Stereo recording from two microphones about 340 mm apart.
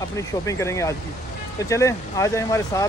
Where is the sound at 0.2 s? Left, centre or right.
Centre.